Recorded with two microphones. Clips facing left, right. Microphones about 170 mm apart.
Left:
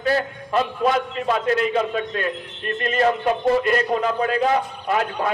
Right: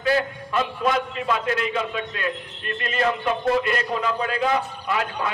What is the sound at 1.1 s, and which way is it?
A man's voice, 40° left (ahead or behind).